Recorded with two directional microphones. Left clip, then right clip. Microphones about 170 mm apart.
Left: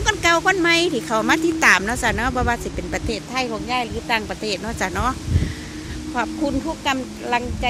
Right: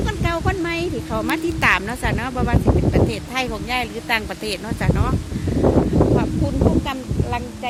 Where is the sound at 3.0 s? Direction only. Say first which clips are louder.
Right 1 dB; 15° right (ahead or behind).